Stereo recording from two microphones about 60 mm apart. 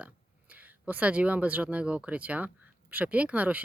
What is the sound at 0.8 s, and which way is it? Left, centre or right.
Speech, right.